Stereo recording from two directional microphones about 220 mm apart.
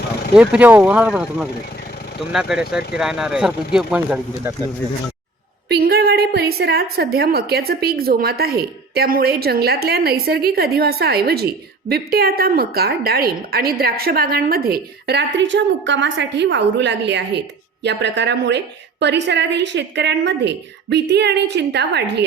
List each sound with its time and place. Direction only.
0.3 s speech: 5° right (ahead or behind)
5.6 s a woman's voice: 45° right (ahead or behind)